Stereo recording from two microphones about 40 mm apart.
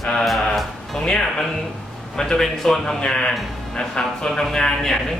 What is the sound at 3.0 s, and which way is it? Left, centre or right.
A man's voice, left.